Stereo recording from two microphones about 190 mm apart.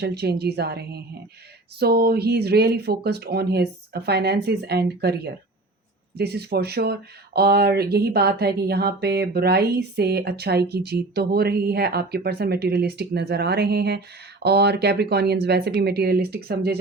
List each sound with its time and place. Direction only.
0.0 s speech: 60° right (ahead or behind)